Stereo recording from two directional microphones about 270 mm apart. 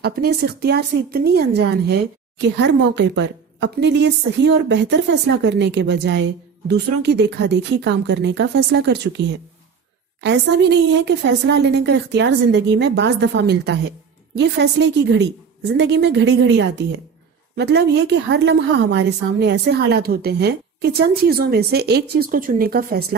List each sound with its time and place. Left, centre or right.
0.0 s speech: right